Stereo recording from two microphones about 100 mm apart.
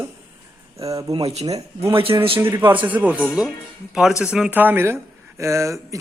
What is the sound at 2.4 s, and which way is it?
A man's voice, 25° right (ahead or behind).